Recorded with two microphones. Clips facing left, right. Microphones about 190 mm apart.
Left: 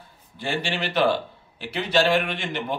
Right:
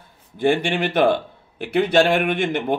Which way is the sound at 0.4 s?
55° right (ahead or behind).